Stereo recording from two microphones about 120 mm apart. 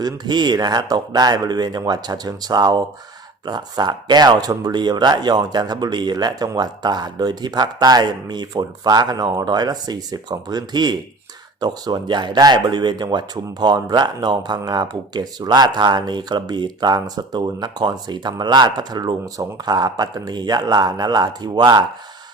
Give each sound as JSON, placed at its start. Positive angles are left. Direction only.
{"t": 0.0, "sound": "speech", "side_deg": -35}